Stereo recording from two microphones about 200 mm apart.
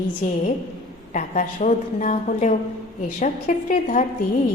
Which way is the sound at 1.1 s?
40° left (ahead or behind).